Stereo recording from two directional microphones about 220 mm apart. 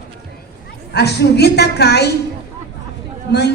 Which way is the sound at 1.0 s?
50° left (ahead or behind).